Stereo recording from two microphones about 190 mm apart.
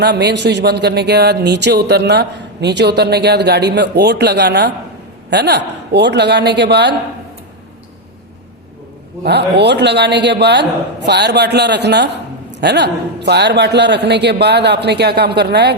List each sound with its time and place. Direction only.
0.0 s a man's voice: 60° right (ahead or behind)
9.2 s a man's voice: 60° right (ahead or behind)